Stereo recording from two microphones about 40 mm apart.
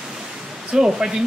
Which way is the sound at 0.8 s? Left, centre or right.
Centre.